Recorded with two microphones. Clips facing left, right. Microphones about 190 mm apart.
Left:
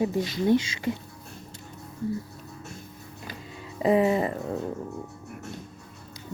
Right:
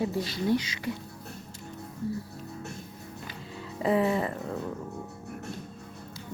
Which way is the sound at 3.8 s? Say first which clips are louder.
Left 4 dB; 15° left (ahead or behind).